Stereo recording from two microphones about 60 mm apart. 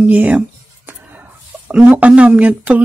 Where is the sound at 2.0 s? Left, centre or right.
Right.